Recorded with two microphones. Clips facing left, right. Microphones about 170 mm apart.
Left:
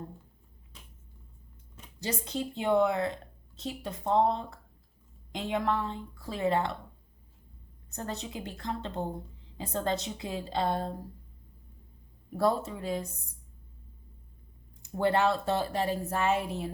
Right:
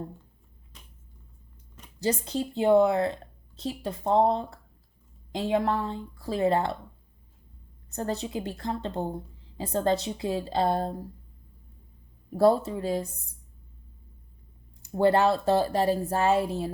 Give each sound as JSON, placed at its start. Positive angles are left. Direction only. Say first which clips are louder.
{"t": 2.0, "sound": "speech", "louder": "right 6 dB", "side_deg": -35}
{"t": 7.9, "sound": "speech", "louder": "right 7 dB", "side_deg": -35}
{"t": 12.4, "sound": "speech", "louder": "right 7 dB", "side_deg": -35}
{"t": 14.8, "sound": "speech", "louder": "right 5 dB", "side_deg": -35}